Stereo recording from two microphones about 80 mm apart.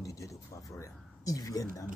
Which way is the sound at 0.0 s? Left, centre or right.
Left.